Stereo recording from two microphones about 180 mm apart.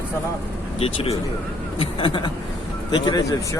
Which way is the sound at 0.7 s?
35° left (ahead or behind).